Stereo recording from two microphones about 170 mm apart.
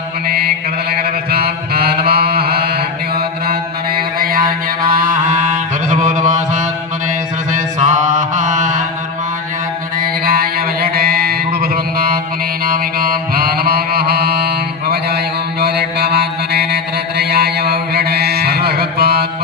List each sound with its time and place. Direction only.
0.9 s chant: 65° right (ahead or behind)
4.2 s music: 55° right (ahead or behind)
4.9 s mantra: 55° right (ahead or behind)
7.8 s mantra: 45° right (ahead or behind)
10.2 s mantra: 60° right (ahead or behind)
12.6 s music: 60° right (ahead or behind)